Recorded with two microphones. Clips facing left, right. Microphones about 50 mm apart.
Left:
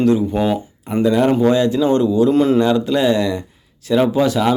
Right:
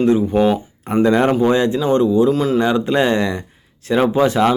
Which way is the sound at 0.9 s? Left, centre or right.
Right.